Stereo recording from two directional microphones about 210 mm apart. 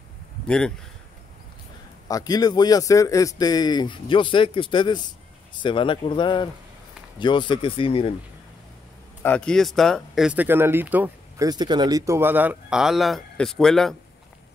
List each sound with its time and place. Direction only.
0.5 s speech: 5° left (ahead or behind)
2.0 s a man's voice: 15° left (ahead or behind)
9.2 s speech: 5° left (ahead or behind)